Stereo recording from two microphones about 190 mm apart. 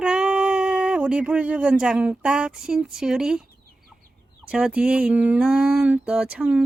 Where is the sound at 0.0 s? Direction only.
5° right (ahead or behind).